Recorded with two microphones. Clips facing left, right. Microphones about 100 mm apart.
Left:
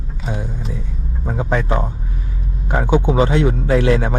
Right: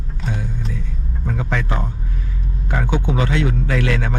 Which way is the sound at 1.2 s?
35° left (ahead or behind).